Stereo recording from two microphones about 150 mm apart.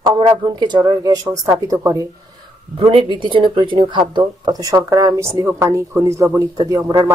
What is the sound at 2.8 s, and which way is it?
Speech, 35° right (ahead or behind).